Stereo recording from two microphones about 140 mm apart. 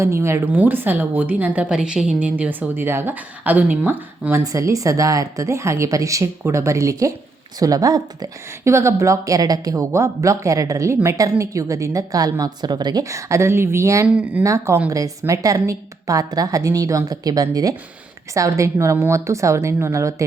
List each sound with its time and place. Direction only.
0.0 s a woman's voice: 20° right (ahead or behind)
14.4 s speech: 20° right (ahead or behind)